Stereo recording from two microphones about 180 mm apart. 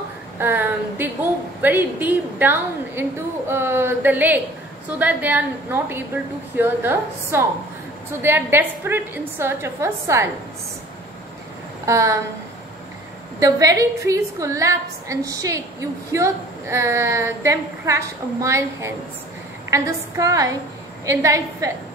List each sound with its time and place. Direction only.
0.4 s a woman's voice: 10° right (ahead or behind)
11.8 s a woman's voice: 15° right (ahead or behind)
13.4 s a woman's voice: 20° right (ahead or behind)